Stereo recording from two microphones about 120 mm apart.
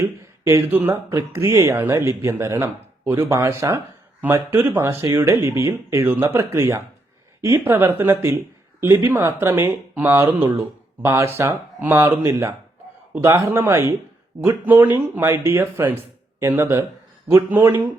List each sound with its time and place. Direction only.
0.0 s speech: 25° right (ahead or behind)